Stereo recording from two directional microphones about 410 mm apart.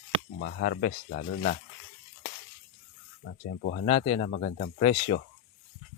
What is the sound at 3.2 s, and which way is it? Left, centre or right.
Speech, left.